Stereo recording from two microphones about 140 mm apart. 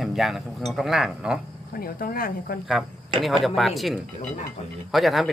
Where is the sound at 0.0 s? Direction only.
Centre (ahead or behind).